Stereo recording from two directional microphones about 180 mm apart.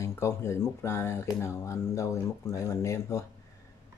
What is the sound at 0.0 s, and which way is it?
Speech, 15° left (ahead or behind).